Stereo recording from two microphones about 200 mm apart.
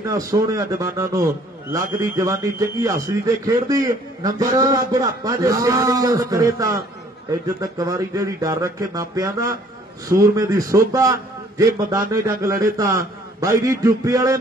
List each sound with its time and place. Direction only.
0.0 s speech: 15° right (ahead or behind)